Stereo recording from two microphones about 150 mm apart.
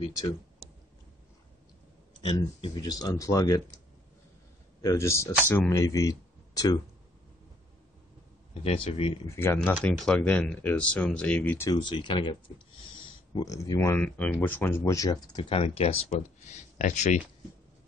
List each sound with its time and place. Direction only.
2.6 s speech: 25° left (ahead or behind)
4.8 s speech: 20° left (ahead or behind)
8.6 s speech: 40° left (ahead or behind)
9.3 s speech: 15° left (ahead or behind)
9.6 s speech: 5° left (ahead or behind)
11.7 s speech: 30° left (ahead or behind)
15.2 s speech: 30° left (ahead or behind)
16.7 s speech: 55° left (ahead or behind)